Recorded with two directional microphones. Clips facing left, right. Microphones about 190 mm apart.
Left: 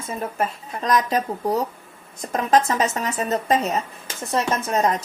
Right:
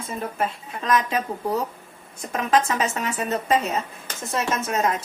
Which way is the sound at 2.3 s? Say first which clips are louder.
Left 2 dB; 40° left (ahead or behind).